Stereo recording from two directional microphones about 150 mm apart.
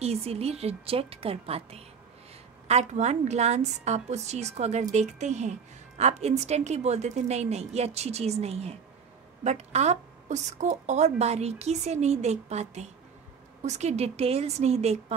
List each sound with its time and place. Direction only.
0.0 s a woman's voice: 45° right (ahead or behind)